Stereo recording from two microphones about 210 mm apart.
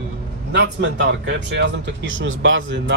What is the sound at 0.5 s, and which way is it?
Speech, 60° right (ahead or behind).